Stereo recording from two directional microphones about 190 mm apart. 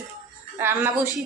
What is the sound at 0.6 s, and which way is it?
Speech, 10° right (ahead or behind).